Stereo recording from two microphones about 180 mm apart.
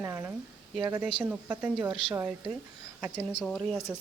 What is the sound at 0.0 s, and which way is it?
Speech, 15° right (ahead or behind).